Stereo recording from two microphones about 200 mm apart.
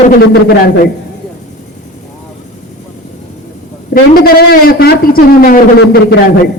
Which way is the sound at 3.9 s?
50° left (ahead or behind).